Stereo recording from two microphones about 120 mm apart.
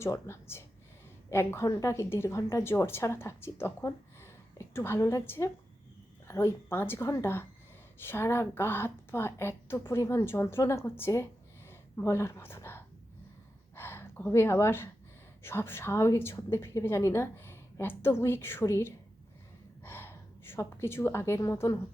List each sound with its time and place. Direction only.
0.0 s a woman's voice: 20° left (ahead or behind)
11.7 s a sound: 20° left (ahead or behind)
15.4 s a woman's voice: 20° left (ahead or behind)